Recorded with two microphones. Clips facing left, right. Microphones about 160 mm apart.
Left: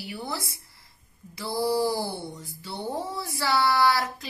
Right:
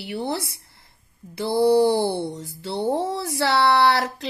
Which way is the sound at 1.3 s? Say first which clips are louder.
Right 8 dB; 65° right (ahead or behind).